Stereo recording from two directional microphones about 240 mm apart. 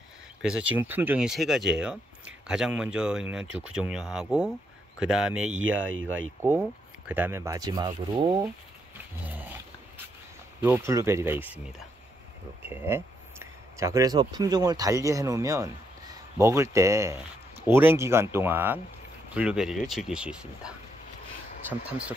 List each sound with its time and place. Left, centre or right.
0.4 s speech: centre
5.9 s speech: right
6.4 s speech: centre
9.3 s roaring cats: centre
10.6 s speech: centre
12.6 s speech: centre